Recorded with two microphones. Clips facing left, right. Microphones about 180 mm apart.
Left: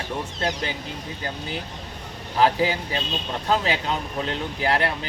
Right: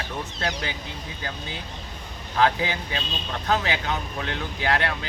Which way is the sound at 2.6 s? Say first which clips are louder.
Left 5 dB; 30° left (ahead or behind).